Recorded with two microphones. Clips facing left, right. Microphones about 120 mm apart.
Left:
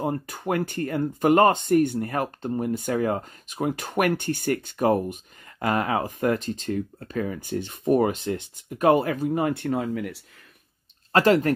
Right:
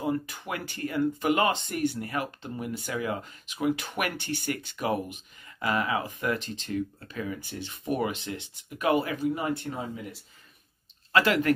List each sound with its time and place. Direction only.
0.0 s speech: 50° left (ahead or behind)
9.8 s speech: 75° left (ahead or behind)
11.1 s speech: 40° left (ahead or behind)